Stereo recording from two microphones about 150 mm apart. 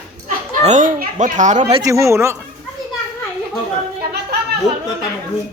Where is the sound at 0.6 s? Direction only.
50° right (ahead or behind).